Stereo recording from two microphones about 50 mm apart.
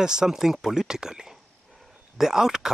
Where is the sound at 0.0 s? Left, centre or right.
Centre.